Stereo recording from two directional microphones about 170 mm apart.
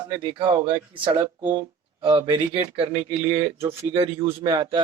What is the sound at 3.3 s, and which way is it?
Speech, 15° right (ahead or behind).